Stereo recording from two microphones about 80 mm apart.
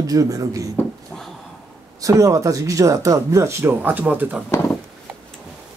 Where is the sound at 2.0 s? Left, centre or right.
Right.